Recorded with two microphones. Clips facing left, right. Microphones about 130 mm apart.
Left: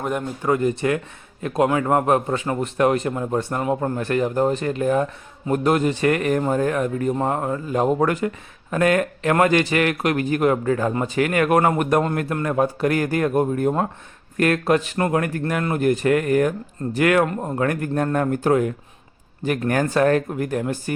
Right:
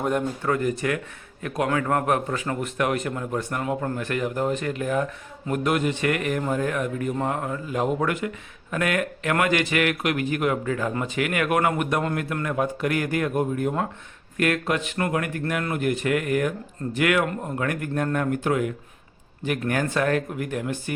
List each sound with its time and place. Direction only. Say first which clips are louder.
0.0 s speech: right 1 dB; centre (ahead or behind)
0.4 s a man's voice: left 8 dB; 20° left (ahead or behind); by 20.9 s 40° left (ahead or behind)